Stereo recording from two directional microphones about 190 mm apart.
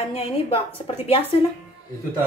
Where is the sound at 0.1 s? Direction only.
30° left (ahead or behind).